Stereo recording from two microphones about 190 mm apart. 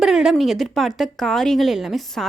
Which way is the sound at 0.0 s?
Centre (ahead or behind).